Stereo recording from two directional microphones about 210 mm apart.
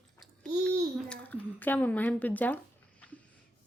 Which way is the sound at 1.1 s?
5° left (ahead or behind).